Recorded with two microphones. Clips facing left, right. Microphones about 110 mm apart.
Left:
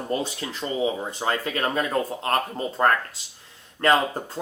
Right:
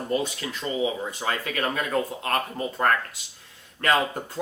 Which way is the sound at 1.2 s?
30° left (ahead or behind).